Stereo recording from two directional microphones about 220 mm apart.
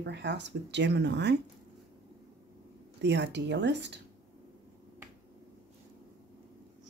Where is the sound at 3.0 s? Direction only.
50° right (ahead or behind).